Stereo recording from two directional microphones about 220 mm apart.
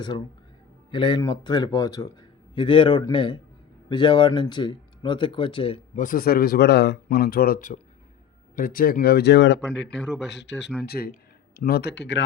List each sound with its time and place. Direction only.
0.1 s speech: 20° left (ahead or behind); by 9.9 s 55° left (ahead or behind)
9.9 s speech: centre (ahead or behind)
10.2 s speech: 50° left (ahead or behind)